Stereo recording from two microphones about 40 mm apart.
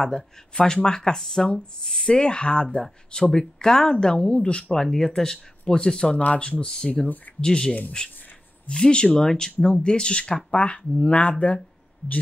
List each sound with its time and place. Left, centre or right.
0.6 s speech: centre
2.0 s speech: left
4.7 s speech: centre
6.1 s speech: left
6.6 s speech: centre